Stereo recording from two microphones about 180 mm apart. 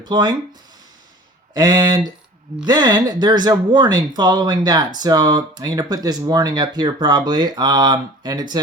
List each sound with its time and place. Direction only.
0.0 s speech: 25° right (ahead or behind)
1.5 s speech: 20° right (ahead or behind)